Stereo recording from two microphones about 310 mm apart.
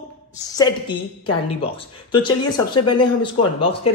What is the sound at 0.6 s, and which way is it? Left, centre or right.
A woman's voice, centre.